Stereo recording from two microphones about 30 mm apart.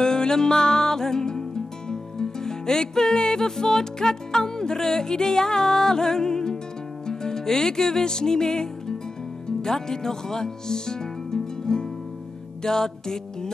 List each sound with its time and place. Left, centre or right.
0.0 s music: left
9.6 s speech: centre
12.6 s music: centre